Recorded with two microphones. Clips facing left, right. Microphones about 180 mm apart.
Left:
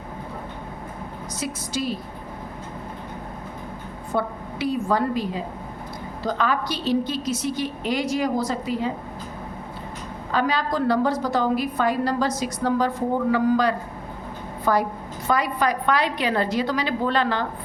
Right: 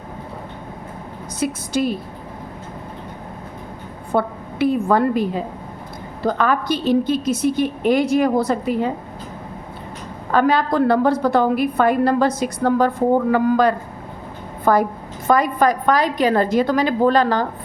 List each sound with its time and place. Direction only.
1.4 s a woman's voice: 55° right (ahead or behind)
4.1 s a woman's voice: 55° right (ahead or behind)
10.3 s a woman's voice: 55° right (ahead or behind)